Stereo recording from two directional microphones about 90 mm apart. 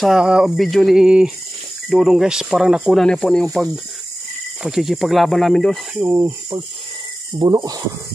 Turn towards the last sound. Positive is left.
turn(degrees=-45)  # may be behind; listen again after turning